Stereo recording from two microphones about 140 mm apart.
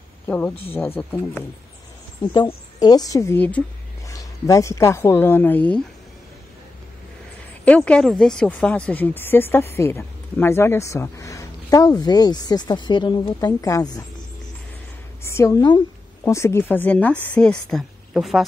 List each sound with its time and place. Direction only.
0.3 s speech: 15° left (ahead or behind)
2.8 s speech: 25° left (ahead or behind)
4.1 s speech: 25° left (ahead or behind)
7.6 s speech: 10° left (ahead or behind)
15.2 s speech: 20° left (ahead or behind); by 18.4 s centre (ahead or behind)